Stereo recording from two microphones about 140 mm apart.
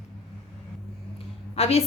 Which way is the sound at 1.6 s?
50° left (ahead or behind).